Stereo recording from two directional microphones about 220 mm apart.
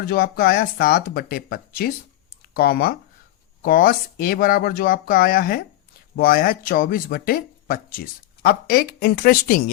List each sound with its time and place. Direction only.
0.0 s speech: 45° left (ahead or behind)